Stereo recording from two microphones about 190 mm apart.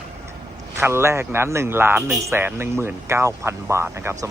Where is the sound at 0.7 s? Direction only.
15° right (ahead or behind).